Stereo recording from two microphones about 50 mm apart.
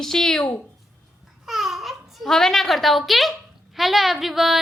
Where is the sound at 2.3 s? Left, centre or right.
Centre.